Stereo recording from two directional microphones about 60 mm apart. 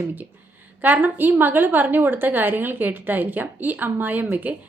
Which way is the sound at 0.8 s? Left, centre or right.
Right.